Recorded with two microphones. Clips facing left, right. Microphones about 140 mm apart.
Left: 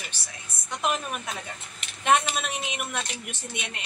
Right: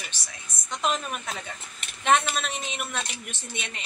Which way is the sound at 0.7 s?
10° left (ahead or behind).